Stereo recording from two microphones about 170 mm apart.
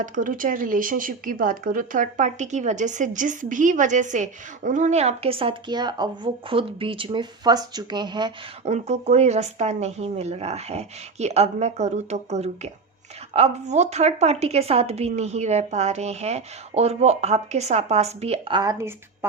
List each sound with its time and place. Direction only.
0.0 s speech: 50° right (ahead or behind); by 8.3 s 25° right (ahead or behind)
8.6 s a woman's voice: 40° right (ahead or behind)
18.6 s speech: 20° right (ahead or behind)